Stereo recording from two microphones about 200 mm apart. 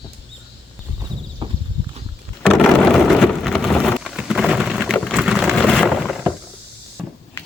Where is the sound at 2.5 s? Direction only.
5° left (ahead or behind).